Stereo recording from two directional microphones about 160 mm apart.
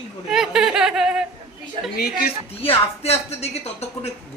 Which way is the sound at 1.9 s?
75° left (ahead or behind).